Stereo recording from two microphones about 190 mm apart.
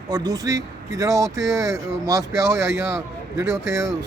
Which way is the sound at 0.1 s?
20° right (ahead or behind).